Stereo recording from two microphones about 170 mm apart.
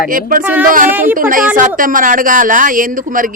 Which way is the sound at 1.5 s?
50° right (ahead or behind).